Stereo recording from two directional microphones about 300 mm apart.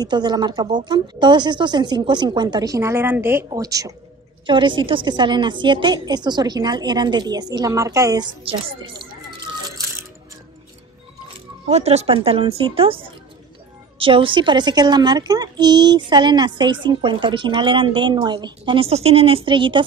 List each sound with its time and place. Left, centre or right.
0.0 s a child's voice: centre
11.6 s a child's voice: right